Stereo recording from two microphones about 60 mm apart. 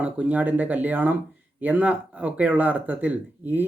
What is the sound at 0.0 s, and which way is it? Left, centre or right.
Speech, right.